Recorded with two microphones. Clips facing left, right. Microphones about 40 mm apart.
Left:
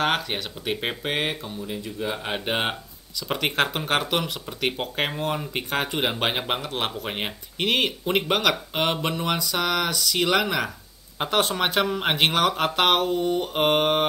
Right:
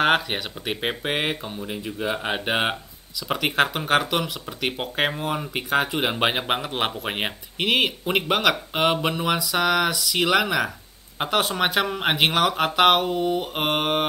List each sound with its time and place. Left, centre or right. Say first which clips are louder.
0.0 s speech: right 4 dB; centre
1.4 s speech: right 1 dB; right
2.2 s speech: right 2 dB; centre
3.2 s speech: right 2 dB; centre